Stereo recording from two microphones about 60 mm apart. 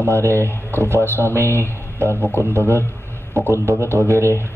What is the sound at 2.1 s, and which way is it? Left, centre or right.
Speech, left.